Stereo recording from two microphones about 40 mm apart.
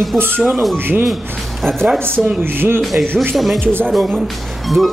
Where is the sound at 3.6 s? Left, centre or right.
Right.